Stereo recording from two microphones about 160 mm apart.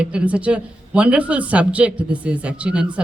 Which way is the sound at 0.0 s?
5° right (ahead or behind).